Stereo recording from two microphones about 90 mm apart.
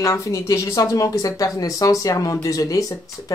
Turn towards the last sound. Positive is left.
turn(degrees=40)  # may be behind; listen again after turning